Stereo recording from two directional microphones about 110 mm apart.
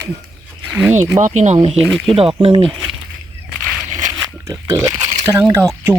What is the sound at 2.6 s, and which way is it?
Speech, centre (ahead or behind).